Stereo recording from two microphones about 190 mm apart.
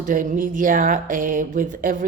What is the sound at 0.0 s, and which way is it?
A woman's voice, 45° right (ahead or behind).